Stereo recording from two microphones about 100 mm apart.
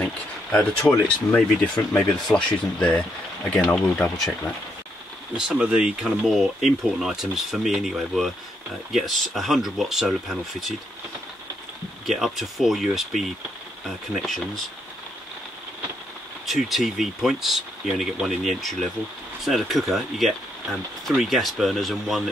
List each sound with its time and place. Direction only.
0.0 s a sound: 20° left (ahead or behind)
1.3 s speech: 10° left (ahead or behind)
5.5 s speech: 10° right (ahead or behind)
12.1 s speech: centre (ahead or behind)
16.4 s speech: centre (ahead or behind)